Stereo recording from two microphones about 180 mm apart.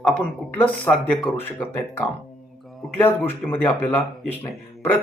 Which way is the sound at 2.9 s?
10° left (ahead or behind).